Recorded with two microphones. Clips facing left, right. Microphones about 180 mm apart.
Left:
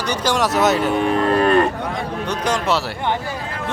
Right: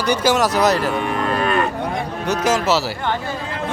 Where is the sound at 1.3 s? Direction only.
40° left (ahead or behind).